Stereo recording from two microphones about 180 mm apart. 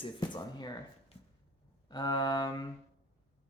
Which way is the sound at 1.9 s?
25° left (ahead or behind).